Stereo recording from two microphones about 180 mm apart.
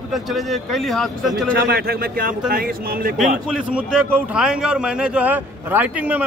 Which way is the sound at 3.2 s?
5° right (ahead or behind).